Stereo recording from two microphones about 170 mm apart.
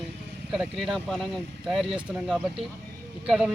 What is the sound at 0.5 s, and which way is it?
A man's voice, centre (ahead or behind).